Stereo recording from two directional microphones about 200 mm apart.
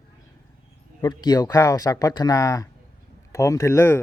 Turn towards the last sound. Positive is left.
turn(degrees=15)  # may be behind; listen again after turning